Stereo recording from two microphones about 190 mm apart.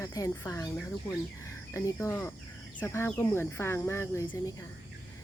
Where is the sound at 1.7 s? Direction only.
15° left (ahead or behind).